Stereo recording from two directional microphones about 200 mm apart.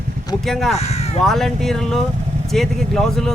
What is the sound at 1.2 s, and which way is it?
Speech, centre (ahead or behind).